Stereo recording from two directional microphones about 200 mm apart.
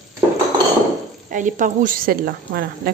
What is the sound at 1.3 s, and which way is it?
A woman's voice, 40° right (ahead or behind).